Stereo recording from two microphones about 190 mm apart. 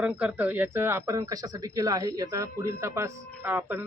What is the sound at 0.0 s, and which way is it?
A man's voice, 5° right (ahead or behind).